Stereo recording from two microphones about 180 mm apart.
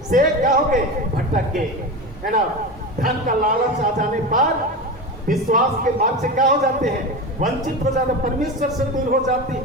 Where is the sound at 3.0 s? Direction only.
50° right (ahead or behind).